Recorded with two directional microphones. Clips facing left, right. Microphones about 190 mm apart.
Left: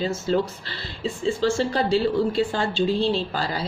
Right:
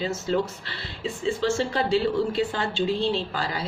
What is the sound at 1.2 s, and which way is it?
A woman's voice, 35° left (ahead or behind).